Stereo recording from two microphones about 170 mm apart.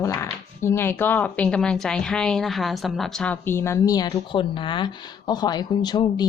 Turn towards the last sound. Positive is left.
turn(degrees=25)  # may be behind; listen again after turning